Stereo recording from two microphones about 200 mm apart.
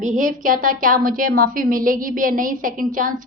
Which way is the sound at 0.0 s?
40° right (ahead or behind).